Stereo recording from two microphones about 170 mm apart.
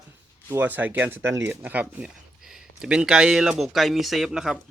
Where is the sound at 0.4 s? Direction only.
10° right (ahead or behind).